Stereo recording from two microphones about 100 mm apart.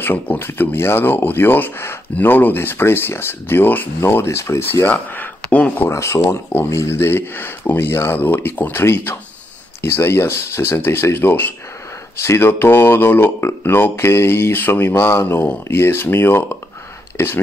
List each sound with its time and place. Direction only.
0.0 s speech: 20° left (ahead or behind)
5.9 s speech: 30° left (ahead or behind)